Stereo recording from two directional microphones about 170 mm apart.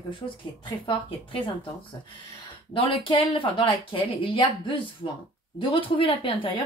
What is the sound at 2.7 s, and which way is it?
Speech, 30° left (ahead or behind).